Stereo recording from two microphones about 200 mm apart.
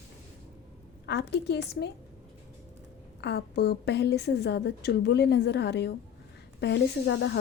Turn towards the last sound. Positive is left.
turn(degrees=60)  # may be behind; listen again after turning